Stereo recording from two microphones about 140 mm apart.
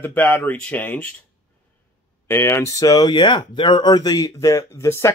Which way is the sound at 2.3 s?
20° left (ahead or behind).